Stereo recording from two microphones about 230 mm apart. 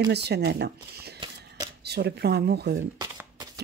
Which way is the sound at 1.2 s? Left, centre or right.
Centre.